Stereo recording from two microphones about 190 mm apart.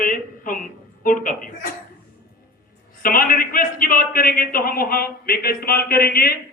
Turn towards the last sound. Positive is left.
turn(degrees=55)  # may be behind; listen again after turning